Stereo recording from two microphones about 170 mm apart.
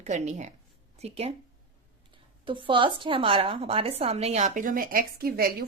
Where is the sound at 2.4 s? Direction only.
30° right (ahead or behind).